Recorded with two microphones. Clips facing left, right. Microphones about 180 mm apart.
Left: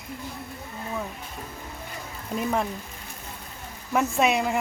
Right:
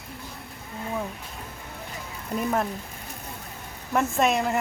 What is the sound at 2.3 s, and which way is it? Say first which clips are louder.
Speech: even; centre (ahead or behind).